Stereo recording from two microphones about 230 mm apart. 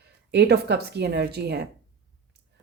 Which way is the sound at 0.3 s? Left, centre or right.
Right.